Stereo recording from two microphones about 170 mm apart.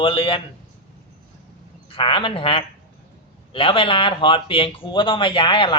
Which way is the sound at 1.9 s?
30° left (ahead or behind).